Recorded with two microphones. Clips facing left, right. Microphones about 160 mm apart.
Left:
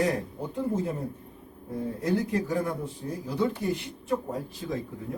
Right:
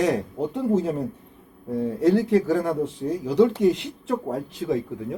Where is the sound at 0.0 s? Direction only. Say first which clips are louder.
Right 5 dB; 90° right.